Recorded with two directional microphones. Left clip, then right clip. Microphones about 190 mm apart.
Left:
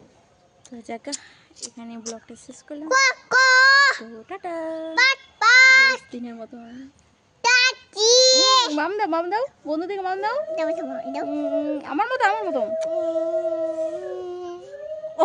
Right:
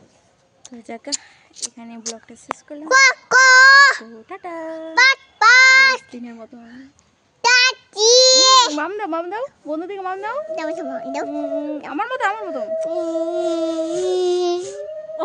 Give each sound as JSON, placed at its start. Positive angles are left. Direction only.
{"t": 0.8, "sound": "speech", "side_deg": -5}
{"t": 1.6, "sound": "speech", "side_deg": -45}
{"t": 2.2, "sound": "speech", "side_deg": 0}
{"t": 2.9, "sound": "child singing", "side_deg": -35}
{"t": 4.3, "sound": "speech", "side_deg": -5}
{"t": 4.9, "sound": "a sound", "side_deg": -35}
{"t": 7.4, "sound": "child singing", "side_deg": -25}
{"t": 8.7, "sound": "speech", "side_deg": 0}
{"t": 10.5, "sound": "a woman's voice", "side_deg": -25}
{"t": 11.2, "sound": "speech", "side_deg": 5}
{"t": 12.9, "sound": "a sound", "side_deg": -15}